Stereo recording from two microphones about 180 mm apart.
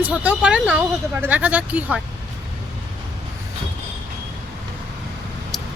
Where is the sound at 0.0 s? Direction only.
5° right (ahead or behind).